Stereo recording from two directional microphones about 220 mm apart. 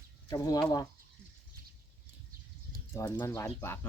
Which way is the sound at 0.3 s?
15° left (ahead or behind).